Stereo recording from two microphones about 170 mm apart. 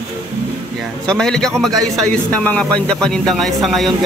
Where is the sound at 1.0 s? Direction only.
5° left (ahead or behind).